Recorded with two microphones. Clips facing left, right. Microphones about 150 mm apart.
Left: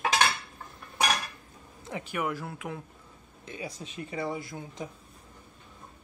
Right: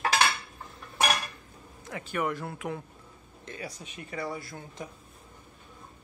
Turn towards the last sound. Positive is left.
turn(degrees=20)  # may be behind; listen again after turning